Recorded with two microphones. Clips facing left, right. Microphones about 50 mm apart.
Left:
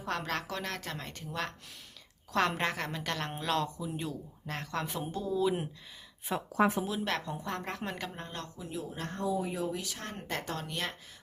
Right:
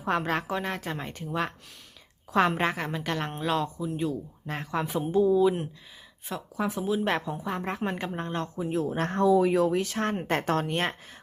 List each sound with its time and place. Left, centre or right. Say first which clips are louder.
0.0 s a woman's voice: right 7 dB; right
6.3 s speech: left 1 dB; centre
7.0 s a woman's voice: right 6 dB; right
7.3 s a woman's voice: right 5 dB; centre
7.6 s a woman's voice: right 7 dB; centre
8.7 s speech: right 10 dB; right
9.8 s speech: right 12 dB; right